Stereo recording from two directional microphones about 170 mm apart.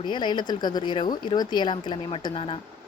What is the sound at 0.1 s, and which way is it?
Speech, 25° left (ahead or behind).